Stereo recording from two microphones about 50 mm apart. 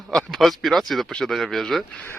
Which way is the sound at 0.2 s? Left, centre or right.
Centre.